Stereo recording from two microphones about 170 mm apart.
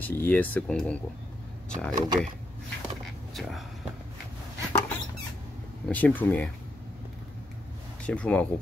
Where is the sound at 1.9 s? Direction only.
25° right (ahead or behind).